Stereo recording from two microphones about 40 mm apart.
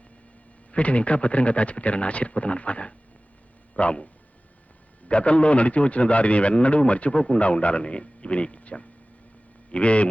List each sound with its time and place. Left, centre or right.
0.7 s a man's voice: left